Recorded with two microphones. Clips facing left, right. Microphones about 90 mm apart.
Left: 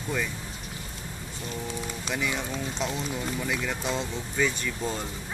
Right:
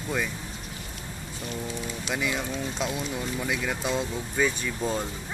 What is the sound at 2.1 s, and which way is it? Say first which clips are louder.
Speech: right 1 dB; 5° right (ahead or behind).